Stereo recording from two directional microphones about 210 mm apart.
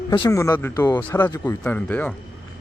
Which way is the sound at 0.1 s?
20° left (ahead or behind).